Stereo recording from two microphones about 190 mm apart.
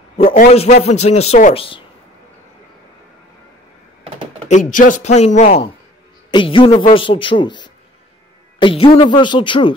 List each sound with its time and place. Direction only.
0.5 s speech: 35° left (ahead or behind)
4.5 s speech: 40° left (ahead or behind)
6.3 s speech: 25° left (ahead or behind)